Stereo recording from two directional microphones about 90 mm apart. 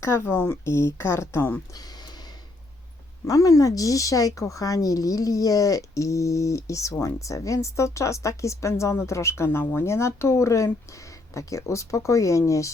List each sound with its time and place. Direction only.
0.0 s a woman's voice: 30° left (ahead or behind)
3.2 s speech: 40° left (ahead or behind)